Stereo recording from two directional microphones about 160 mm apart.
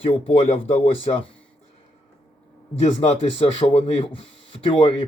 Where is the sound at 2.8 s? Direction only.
35° left (ahead or behind).